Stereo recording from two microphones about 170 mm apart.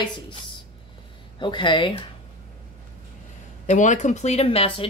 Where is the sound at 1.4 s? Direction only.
30° left (ahead or behind).